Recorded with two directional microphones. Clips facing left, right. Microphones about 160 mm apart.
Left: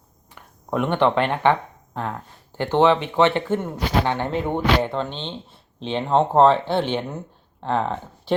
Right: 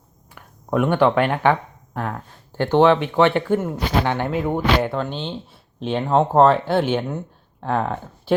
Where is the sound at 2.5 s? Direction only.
15° left (ahead or behind).